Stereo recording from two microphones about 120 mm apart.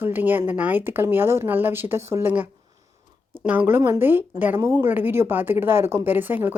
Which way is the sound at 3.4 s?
15° right (ahead or behind).